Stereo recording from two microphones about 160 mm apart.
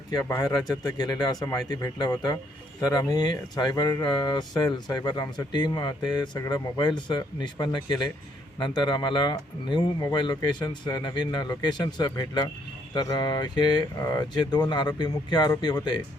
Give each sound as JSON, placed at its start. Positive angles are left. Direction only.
{"t": 0.1, "sound": "speech", "side_deg": 25}